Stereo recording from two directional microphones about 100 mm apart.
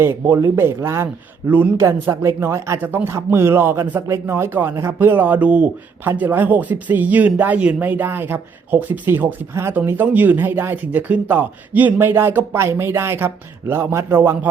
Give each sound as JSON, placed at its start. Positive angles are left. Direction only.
{"t": 0.0, "sound": "speech", "side_deg": -25}